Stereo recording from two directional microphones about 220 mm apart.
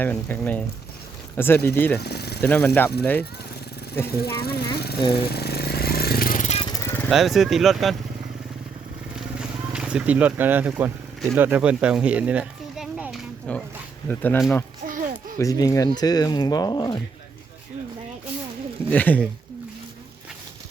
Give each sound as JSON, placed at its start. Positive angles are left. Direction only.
{"t": 0.0, "sound": "speech", "side_deg": 5}
{"t": 2.0, "sound": "speech", "side_deg": 50}
{"t": 2.4, "sound": "speech", "side_deg": 5}
{"t": 4.2, "sound": "speech", "side_deg": 45}
{"t": 4.9, "sound": "speech", "side_deg": 20}
{"t": 5.3, "sound": "jackhammer", "side_deg": 45}
{"t": 7.1, "sound": "speech", "side_deg": 0}
{"t": 9.4, "sound": "vehicle", "side_deg": -5}
{"t": 14.1, "sound": "speech", "side_deg": 10}
{"t": 14.8, "sound": "a sound", "side_deg": -40}
{"t": 15.4, "sound": "speech", "side_deg": 15}
{"t": 18.9, "sound": "speech", "side_deg": 5}